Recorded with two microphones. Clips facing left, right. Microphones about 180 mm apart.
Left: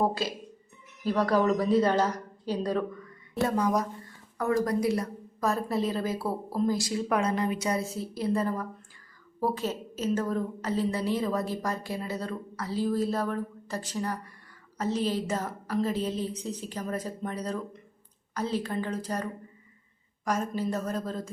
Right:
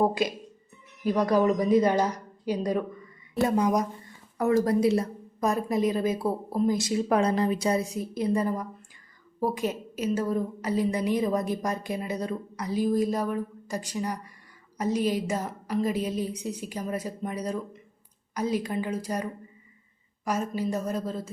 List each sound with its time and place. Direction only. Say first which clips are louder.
0.0 s a woman's voice: right 3 dB; 15° right (ahead or behind)
7.2 s speech: right 3 dB; 35° right (ahead or behind)
7.8 s a woman's voice: right 3 dB; 15° right (ahead or behind)